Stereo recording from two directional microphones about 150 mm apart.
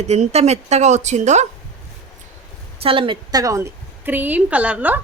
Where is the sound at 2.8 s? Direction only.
35° right (ahead or behind).